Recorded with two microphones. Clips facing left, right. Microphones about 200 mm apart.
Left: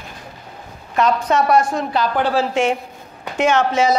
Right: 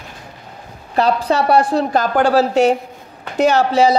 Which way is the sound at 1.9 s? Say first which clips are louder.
Right 4 dB; 45° right (ahead or behind).